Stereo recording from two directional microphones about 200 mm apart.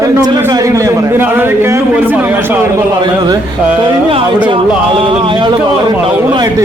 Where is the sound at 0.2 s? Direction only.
15° right (ahead or behind).